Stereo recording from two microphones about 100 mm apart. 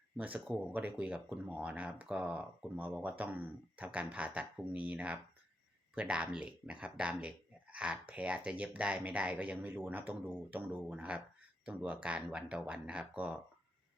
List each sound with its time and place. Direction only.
0.2 s speech: 15° right (ahead or behind)